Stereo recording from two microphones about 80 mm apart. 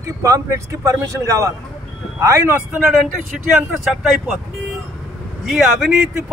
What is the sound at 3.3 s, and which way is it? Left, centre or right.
Speech, centre.